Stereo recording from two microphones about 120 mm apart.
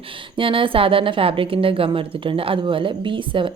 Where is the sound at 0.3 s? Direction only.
45° right (ahead or behind).